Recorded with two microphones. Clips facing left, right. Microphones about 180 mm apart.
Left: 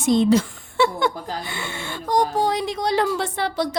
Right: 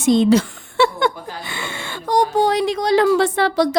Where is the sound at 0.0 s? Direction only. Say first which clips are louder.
Right 3 dB; 90° right.